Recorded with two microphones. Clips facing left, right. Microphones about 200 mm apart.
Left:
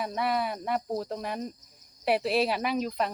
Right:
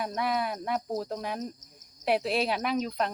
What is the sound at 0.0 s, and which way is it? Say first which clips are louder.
Speech: left 1 dB; centre (ahead or behind).